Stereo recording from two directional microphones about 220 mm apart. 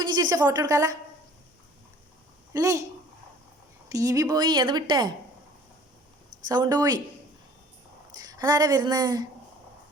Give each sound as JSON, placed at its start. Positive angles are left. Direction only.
{"t": 0.0, "sound": "speech", "side_deg": -20}
{"t": 2.5, "sound": "speech", "side_deg": -15}
{"t": 3.8, "sound": "a woman's voice", "side_deg": -15}
{"t": 6.5, "sound": "speech", "side_deg": -15}
{"t": 8.1, "sound": "speech", "side_deg": -15}